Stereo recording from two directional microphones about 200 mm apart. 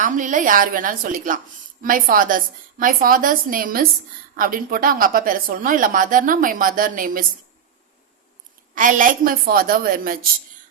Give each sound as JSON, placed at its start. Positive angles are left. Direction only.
{"t": 0.0, "sound": "a woman's voice", "side_deg": -40}
{"t": 8.7, "sound": "a woman's voice", "side_deg": -40}